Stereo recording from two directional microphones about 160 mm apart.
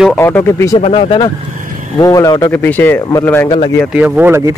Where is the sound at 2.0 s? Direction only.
20° left (ahead or behind).